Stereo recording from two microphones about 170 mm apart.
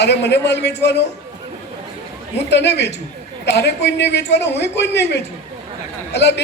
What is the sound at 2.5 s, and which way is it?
A man's voice, 90° left.